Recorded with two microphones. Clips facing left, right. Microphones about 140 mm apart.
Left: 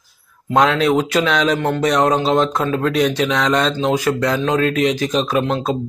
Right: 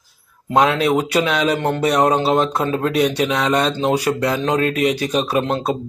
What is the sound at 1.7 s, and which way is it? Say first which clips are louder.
Speech: right 1 dB; 10° right (ahead or behind).